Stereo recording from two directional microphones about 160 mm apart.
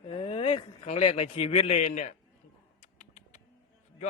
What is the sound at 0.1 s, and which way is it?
A man's voice, 35° left (ahead or behind).